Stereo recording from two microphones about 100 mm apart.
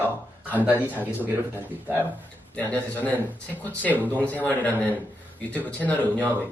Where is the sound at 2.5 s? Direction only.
15° left (ahead or behind).